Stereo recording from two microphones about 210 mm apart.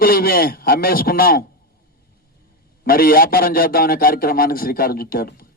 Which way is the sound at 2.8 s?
45° left (ahead or behind).